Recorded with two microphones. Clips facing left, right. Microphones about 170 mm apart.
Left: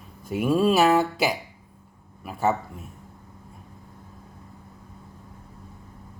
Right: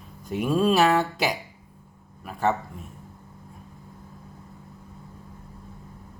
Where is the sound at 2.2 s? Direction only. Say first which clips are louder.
Left 1 dB; 5° left (ahead or behind).